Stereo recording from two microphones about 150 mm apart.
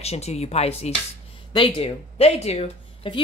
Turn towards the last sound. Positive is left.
turn(degrees=40)  # may be behind; listen again after turning